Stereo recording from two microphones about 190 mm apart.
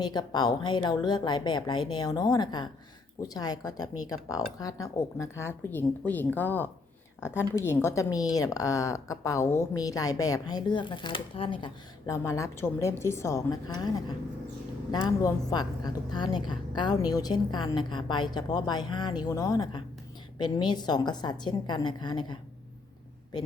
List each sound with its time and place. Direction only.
0.0 s a woman's voice: 20° left (ahead or behind)
14.9 s a woman's voice: 20° left (ahead or behind)